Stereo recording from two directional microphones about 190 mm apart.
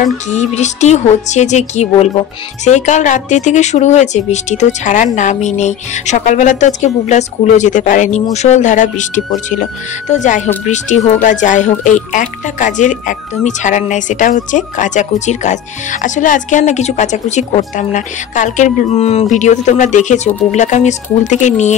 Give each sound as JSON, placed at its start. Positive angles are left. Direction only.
{"t": 0.6, "sound": "speech", "side_deg": 35}